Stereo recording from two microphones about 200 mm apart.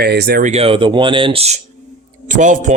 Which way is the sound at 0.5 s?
30° right (ahead or behind).